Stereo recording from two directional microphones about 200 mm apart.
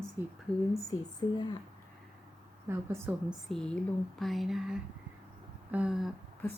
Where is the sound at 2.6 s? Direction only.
10° right (ahead or behind).